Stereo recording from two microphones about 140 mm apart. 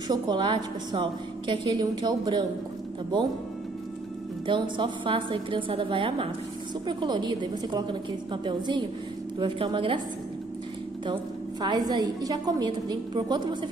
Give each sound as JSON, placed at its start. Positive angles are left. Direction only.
{"t": 0.1, "sound": "a woman's voice", "side_deg": -35}
{"t": 4.5, "sound": "a woman's voice", "side_deg": -35}
{"t": 11.6, "sound": "a woman's voice", "side_deg": -30}